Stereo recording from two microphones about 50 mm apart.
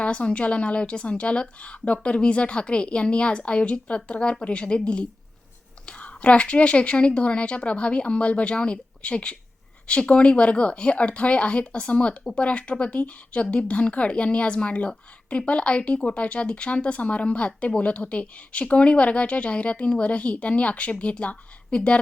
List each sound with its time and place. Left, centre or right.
0.0 s a woman's voice: left